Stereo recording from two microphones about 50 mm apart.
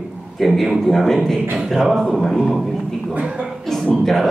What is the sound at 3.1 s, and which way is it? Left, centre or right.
Speech, right.